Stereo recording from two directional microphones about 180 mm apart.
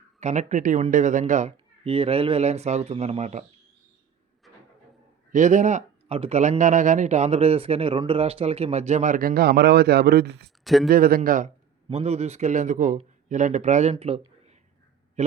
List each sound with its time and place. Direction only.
0.2 s speech: 40° right (ahead or behind)
5.3 s speech: 45° right (ahead or behind); by 10.5 s 65° right (ahead or behind)
10.6 s speech: centre (ahead or behind)
10.8 s speech: 55° right (ahead or behind)
11.9 s speech: 35° right (ahead or behind)